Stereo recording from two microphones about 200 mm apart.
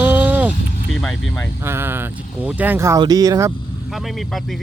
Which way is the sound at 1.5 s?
10° right (ahead or behind).